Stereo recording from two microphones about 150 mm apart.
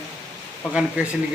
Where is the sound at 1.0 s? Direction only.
10° right (ahead or behind).